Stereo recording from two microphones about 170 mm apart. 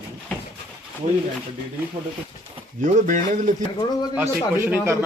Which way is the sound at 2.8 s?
50° right (ahead or behind).